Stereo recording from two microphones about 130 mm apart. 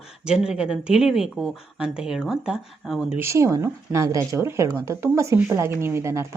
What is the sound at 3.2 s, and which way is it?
Speech, 20° right (ahead or behind).